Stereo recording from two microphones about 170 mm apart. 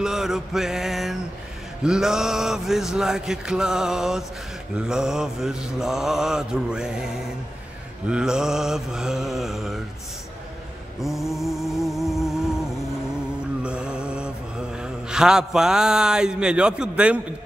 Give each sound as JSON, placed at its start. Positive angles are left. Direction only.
{"t": 0.0, "sound": "mantra", "side_deg": 0}
{"t": 11.0, "sound": "mantra", "side_deg": 0}
{"t": 11.3, "sound": "music", "side_deg": 0}
{"t": 13.6, "sound": "mantra", "side_deg": -5}